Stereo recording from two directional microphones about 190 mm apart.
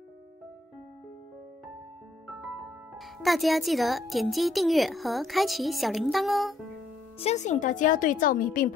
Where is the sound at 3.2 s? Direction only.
Centre (ahead or behind).